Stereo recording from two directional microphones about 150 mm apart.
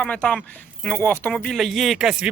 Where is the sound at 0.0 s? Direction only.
5° left (ahead or behind).